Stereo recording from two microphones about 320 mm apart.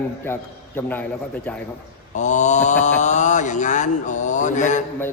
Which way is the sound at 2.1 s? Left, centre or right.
Left.